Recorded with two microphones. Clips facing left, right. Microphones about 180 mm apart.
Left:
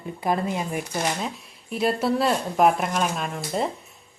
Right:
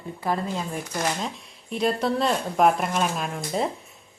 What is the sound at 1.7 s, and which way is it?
Speech, 5° left (ahead or behind).